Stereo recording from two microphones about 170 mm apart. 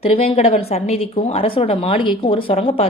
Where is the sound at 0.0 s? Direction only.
35° left (ahead or behind).